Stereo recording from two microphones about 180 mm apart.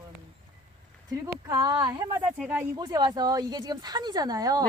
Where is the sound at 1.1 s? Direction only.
20° right (ahead or behind).